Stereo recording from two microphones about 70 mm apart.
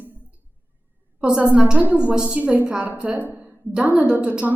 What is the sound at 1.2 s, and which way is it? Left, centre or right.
A woman's voice, centre.